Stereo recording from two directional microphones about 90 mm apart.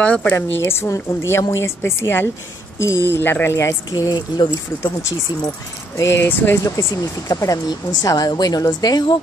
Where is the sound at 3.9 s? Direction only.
50° left (ahead or behind).